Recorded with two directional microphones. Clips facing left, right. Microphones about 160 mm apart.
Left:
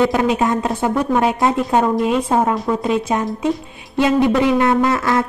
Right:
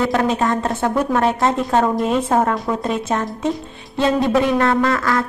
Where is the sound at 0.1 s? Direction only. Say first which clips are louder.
Left 1 dB; 5° left (ahead or behind).